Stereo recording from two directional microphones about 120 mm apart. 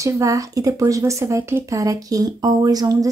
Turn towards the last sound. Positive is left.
turn(degrees=-30)  # may be behind; listen again after turning